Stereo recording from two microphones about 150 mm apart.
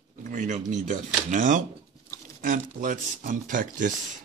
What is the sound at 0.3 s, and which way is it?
Speech, 60° right (ahead or behind).